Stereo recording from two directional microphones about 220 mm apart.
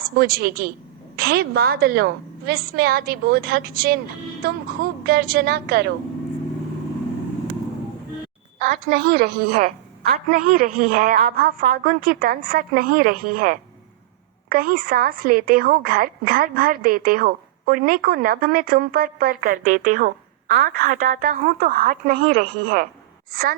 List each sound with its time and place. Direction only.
0.0 s a woman's voice: 45° right (ahead or behind)
8.5 s a woman's voice: 40° right (ahead or behind)